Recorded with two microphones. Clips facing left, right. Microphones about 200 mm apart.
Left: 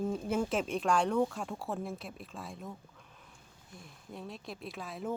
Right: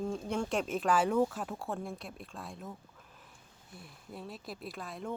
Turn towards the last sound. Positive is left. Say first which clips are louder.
# left 2 dB
turn(degrees=0)  # may be behind; listen again after turning